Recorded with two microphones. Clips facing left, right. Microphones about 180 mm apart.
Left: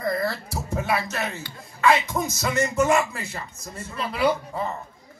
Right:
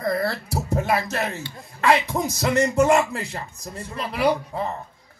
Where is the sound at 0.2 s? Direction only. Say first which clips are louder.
Right 2 dB; 35° right (ahead or behind).